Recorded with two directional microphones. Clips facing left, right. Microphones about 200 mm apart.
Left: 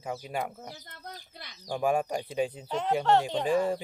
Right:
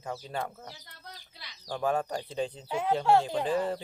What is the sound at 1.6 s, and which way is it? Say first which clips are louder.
Speech: left 2 dB; 10° left (ahead or behind).